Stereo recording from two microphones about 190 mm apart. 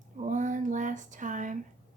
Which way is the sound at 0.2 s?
40° right (ahead or behind).